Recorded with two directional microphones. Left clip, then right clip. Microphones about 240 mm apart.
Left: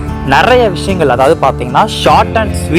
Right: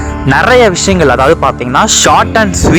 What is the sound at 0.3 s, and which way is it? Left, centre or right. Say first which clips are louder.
Speech: right 1 dB; centre.